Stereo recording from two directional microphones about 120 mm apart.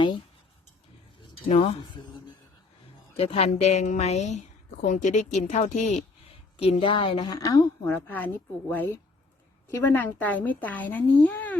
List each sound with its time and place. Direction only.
1.5 s speech: 60° left (ahead or behind)
3.2 s a woman's voice: 55° left (ahead or behind); by 6.0 s 75° left (ahead or behind)
6.6 s a woman's voice: 50° left (ahead or behind)
7.2 s a woman's voice: 30° left (ahead or behind)
7.9 s speech: 15° left (ahead or behind)